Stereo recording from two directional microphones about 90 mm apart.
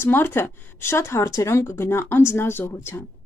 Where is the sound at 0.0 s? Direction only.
25° left (ahead or behind).